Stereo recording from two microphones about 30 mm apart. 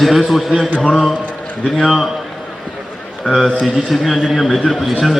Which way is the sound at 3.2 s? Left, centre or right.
Centre.